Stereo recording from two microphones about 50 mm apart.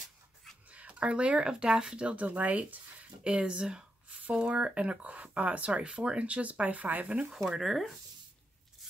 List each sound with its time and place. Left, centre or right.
0.7 s speech: right
7.4 s speech: centre